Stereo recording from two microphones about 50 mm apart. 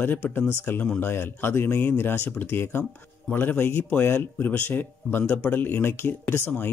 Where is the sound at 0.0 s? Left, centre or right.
Left.